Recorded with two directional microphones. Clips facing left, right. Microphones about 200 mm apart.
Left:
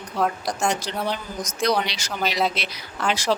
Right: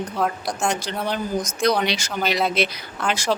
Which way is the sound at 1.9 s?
50° right (ahead or behind).